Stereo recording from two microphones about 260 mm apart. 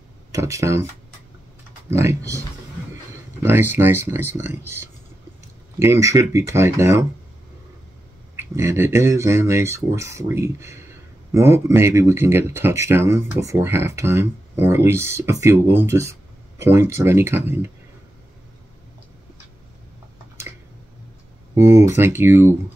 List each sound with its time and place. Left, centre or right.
0.3 s speech: centre
1.9 s speech: centre
3.4 s speech: centre
8.4 s speech: centre
21.5 s speech: centre